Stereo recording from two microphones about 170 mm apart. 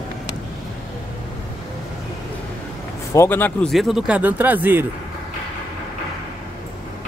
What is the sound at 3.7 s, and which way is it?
Speech, centre (ahead or behind).